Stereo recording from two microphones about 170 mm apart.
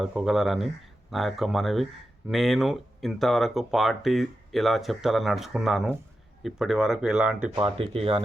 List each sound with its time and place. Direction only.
0.0 s speech: 5° right (ahead or behind)
7.5 s speech: 35° right (ahead or behind)